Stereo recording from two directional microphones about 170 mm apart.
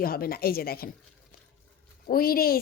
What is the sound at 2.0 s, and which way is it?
Speech, 60° left (ahead or behind).